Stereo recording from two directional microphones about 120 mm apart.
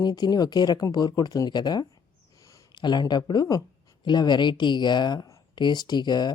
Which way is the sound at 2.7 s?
40° left (ahead or behind).